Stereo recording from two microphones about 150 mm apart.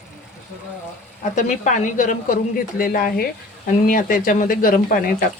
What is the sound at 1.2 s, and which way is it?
Speech, 55° left (ahead or behind).